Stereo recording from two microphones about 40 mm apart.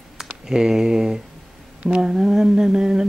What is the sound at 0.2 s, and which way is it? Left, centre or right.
Speech, centre.